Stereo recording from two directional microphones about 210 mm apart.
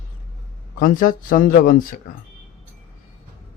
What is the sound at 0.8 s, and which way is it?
Speech, 40° left (ahead or behind).